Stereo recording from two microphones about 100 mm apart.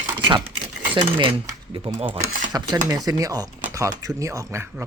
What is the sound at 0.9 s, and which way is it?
Speech, 55° right (ahead or behind).